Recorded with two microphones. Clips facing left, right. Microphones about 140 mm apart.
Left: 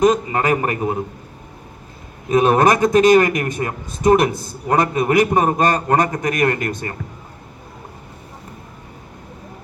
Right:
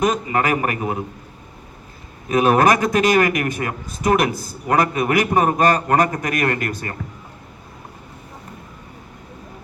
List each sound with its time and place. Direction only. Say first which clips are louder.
0.0 s a man's voice: left 3 dB; 25° left (ahead or behind)
2.3 s a man's voice: left 1 dB; 25° left (ahead or behind)